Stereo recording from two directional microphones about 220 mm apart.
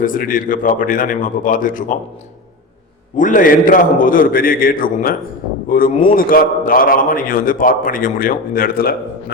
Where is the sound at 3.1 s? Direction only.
35° left (ahead or behind).